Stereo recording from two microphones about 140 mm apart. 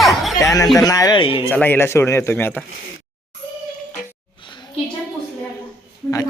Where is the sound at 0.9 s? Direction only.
25° left (ahead or behind).